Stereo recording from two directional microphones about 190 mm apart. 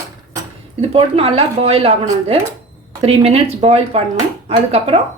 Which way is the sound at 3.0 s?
35° right (ahead or behind).